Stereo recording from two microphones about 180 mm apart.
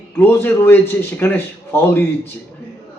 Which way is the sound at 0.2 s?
15° left (ahead or behind).